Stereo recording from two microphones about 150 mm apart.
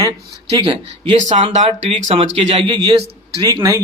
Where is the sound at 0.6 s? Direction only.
40° right (ahead or behind).